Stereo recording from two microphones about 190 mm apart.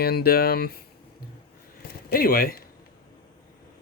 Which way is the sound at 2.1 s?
50° left (ahead or behind).